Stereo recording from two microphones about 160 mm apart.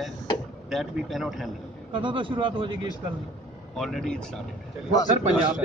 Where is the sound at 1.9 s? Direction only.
30° right (ahead or behind).